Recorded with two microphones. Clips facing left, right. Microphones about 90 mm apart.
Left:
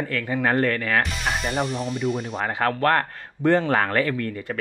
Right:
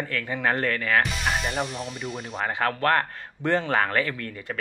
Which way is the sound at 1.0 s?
Centre (ahead or behind).